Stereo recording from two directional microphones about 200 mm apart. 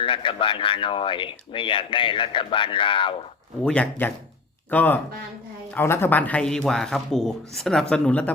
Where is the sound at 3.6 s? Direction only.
5° left (ahead or behind).